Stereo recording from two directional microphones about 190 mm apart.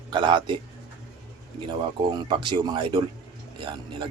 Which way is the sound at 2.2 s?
25° right (ahead or behind).